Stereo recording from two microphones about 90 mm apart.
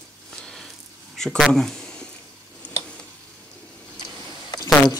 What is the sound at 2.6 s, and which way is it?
Tick-tock, 15° left (ahead or behind).